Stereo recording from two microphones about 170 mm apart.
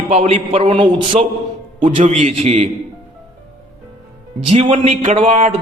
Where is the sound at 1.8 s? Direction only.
45° right (ahead or behind).